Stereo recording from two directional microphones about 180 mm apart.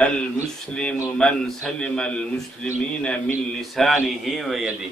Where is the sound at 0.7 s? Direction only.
5° left (ahead or behind).